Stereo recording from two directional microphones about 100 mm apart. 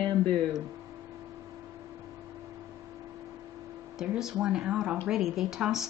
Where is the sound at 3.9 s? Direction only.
5° right (ahead or behind).